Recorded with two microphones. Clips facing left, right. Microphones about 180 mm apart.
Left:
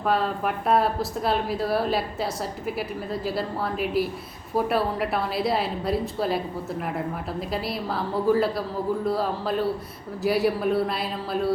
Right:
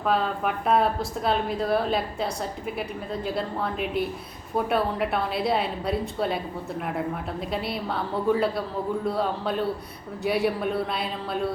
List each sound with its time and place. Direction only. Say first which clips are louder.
0.0 s speech: even; centre (ahead or behind)